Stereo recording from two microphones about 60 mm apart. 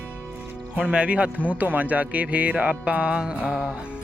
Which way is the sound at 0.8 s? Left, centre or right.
Centre.